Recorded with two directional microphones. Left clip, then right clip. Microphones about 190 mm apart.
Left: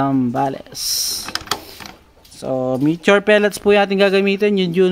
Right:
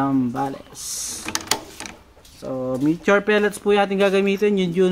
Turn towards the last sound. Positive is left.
turn(degrees=45)  # may be behind; listen again after turning